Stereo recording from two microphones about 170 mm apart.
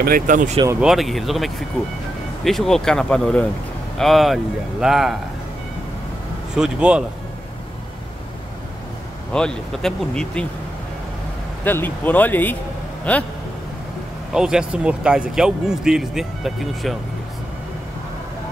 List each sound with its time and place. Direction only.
0.0 s speech: 55° right (ahead or behind)
0.7 s speech: centre (ahead or behind)
6.5 s speech: 5° right (ahead or behind)
9.3 s speech: 5° left (ahead or behind)
11.6 s speech: 10° left (ahead or behind)
14.3 s speech: 5° right (ahead or behind)